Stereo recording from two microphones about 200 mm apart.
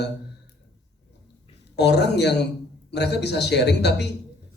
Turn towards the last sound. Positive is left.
turn(degrees=55)  # may be behind; listen again after turning